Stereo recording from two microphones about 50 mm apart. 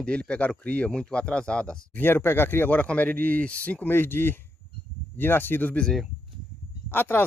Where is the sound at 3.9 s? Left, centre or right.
Left.